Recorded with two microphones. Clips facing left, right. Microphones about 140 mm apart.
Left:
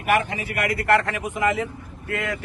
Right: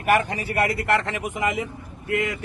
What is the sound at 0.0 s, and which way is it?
A man's voice, 40° right (ahead or behind).